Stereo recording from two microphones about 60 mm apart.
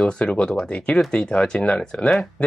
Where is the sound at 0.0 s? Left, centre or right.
Centre.